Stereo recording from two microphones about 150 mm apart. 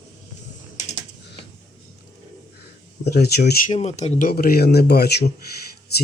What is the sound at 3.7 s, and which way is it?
Speech, 50° left (ahead or behind).